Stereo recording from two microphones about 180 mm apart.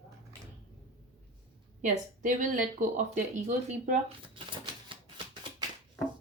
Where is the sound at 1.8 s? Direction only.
45° right (ahead or behind).